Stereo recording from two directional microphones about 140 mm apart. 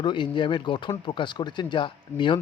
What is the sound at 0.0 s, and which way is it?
Speech, 35° left (ahead or behind).